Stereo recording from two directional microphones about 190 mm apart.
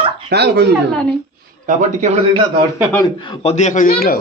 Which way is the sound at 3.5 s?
40° left (ahead or behind).